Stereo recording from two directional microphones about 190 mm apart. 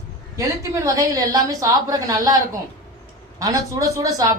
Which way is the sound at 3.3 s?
20° right (ahead or behind).